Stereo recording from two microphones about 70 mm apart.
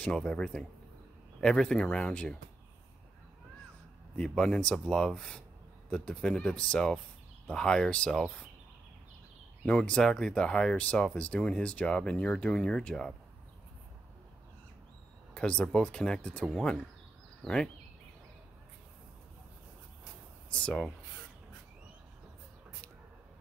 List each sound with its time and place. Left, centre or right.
0.0 s speech: centre
4.2 s speech: centre
9.7 s speech: centre
15.3 s speech: centre
20.4 s a sound: centre